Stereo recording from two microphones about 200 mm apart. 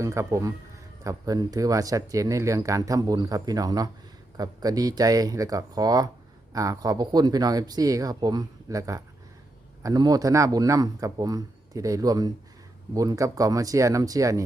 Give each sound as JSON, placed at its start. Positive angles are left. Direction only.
{"t": 0.0, "sound": "speech", "side_deg": -15}